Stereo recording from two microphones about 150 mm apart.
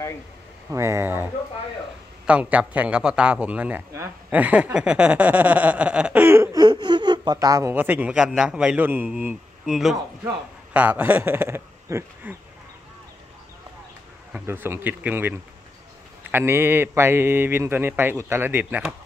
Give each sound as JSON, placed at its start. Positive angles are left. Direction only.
{"t": 0.7, "sound": "a man's voice", "side_deg": -15}
{"t": 7.7, "sound": "a man's voice", "side_deg": -10}
{"t": 14.3, "sound": "a man's voice", "side_deg": -15}